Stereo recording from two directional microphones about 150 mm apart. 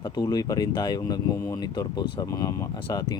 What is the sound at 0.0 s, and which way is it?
Speech, 25° left (ahead or behind).